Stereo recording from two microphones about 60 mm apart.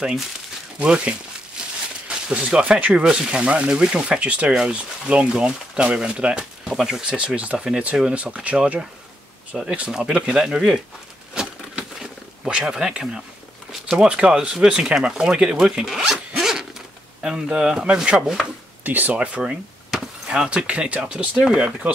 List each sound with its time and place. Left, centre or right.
0.7 s speech: centre
2.0 s a sound: centre
2.8 s speech: right
11.3 s a sound: centre
13.9 s speech: centre
15.6 s zipper: centre
17.2 s speech: centre
18.9 s speech: right
19.9 s speech: centre